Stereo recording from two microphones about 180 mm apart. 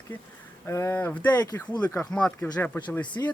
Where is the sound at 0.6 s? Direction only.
15° left (ahead or behind).